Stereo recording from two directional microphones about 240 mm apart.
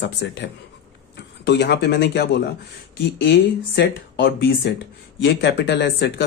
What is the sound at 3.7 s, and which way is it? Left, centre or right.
Speech, left.